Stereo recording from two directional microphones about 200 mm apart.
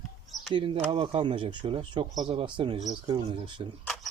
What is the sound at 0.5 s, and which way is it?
Speech, 25° right (ahead or behind).